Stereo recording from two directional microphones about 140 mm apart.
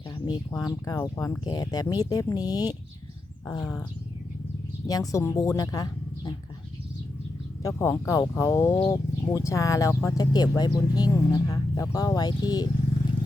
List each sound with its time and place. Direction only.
0.1 s speech: 30° left (ahead or behind)
3.6 s speech: 5° left (ahead or behind)
4.9 s speech: 25° left (ahead or behind)
7.6 s speech: 20° left (ahead or behind)